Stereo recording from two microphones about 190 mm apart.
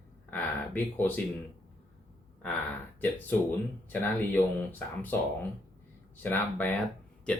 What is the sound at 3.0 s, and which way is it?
Speech, 10° left (ahead or behind).